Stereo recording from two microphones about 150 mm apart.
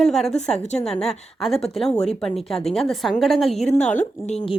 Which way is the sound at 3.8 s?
55° left (ahead or behind).